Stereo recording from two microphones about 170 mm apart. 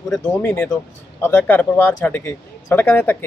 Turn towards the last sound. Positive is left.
turn(degrees=10)  # may be behind; listen again after turning